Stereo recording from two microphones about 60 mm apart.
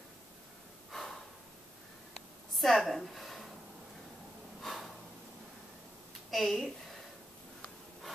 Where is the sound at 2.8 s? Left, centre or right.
Centre.